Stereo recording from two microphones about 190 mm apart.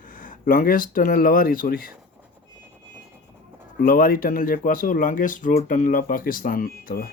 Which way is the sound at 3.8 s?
50° left (ahead or behind).